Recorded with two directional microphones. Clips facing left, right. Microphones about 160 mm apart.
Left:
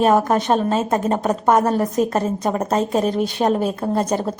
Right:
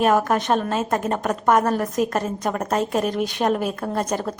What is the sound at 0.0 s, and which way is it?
A woman's voice, 25° left (ahead or behind).